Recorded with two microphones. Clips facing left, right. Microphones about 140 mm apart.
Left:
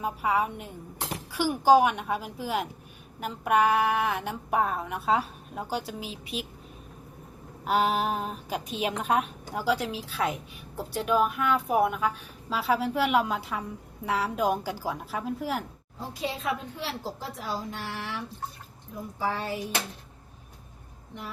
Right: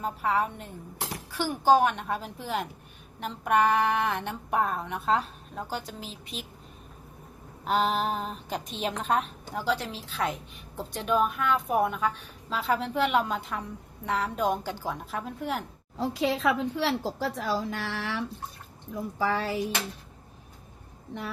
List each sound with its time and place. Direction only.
0.0 s a woman's voice: 10° left (ahead or behind)
7.6 s a woman's voice: 5° left (ahead or behind)
16.0 s speech: 90° right
19.2 s speech: 90° right